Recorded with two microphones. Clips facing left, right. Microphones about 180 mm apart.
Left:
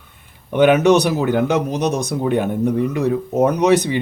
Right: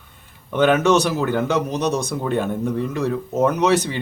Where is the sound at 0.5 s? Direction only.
15° left (ahead or behind).